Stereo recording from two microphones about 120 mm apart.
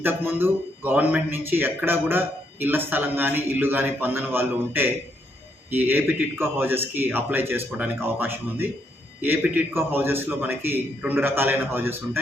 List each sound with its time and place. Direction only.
0.0 s speech: 15° right (ahead or behind)